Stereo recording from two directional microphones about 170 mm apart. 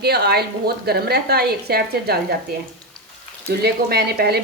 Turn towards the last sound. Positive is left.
turn(degrees=-70)  # may be behind; listen again after turning